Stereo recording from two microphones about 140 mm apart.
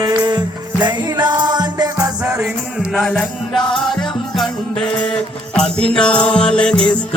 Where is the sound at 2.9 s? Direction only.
5° left (ahead or behind).